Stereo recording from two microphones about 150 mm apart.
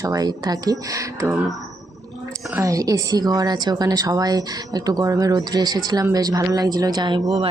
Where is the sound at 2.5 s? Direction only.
20° right (ahead or behind).